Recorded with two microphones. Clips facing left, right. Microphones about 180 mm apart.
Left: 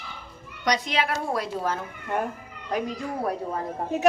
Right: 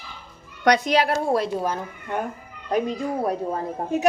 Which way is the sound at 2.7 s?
25° right (ahead or behind).